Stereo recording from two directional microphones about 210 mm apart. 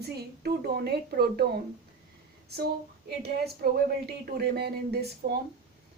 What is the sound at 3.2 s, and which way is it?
A woman's voice, 50° right (ahead or behind).